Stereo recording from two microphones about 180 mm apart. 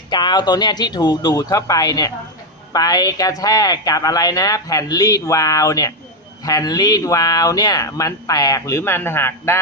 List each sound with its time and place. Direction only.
0.1 s speech: 25° left (ahead or behind)